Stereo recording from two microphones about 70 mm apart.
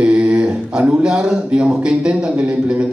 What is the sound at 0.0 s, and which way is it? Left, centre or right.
A man's voice, centre.